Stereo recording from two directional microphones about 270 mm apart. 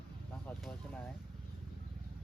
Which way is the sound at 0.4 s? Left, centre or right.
Centre.